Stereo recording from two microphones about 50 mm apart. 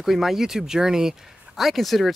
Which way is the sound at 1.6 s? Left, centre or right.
Centre.